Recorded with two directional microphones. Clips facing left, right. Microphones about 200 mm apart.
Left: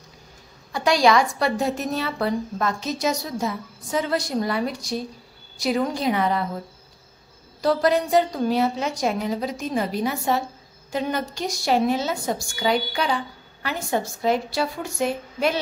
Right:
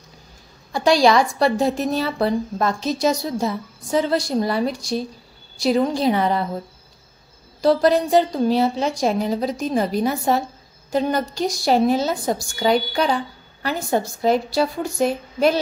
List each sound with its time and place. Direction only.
0.7 s a woman's voice: 35° right (ahead or behind)
7.6 s a woman's voice: 30° right (ahead or behind)